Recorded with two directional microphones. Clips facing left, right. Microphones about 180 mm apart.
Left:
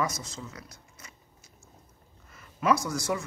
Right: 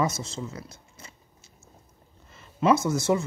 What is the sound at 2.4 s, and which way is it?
Speech, 25° right (ahead or behind).